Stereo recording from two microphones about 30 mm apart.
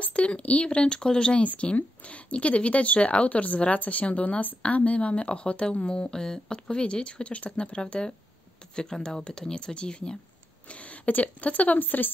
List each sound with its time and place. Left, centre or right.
0.0 s speech: left
2.3 s speech: left
8.7 s speech: left
10.7 s a sound: left
11.1 s speech: left